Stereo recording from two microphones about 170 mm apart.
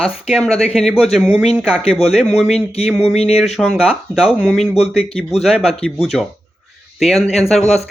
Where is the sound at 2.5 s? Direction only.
35° left (ahead or behind).